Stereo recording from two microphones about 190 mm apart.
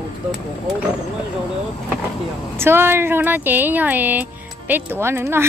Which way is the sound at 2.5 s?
10° right (ahead or behind).